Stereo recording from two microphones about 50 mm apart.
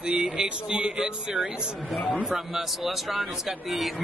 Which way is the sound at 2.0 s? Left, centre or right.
Left.